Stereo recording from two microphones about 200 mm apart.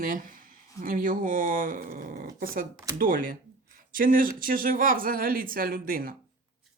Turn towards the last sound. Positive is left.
turn(degrees=-45)  # may be behind; listen again after turning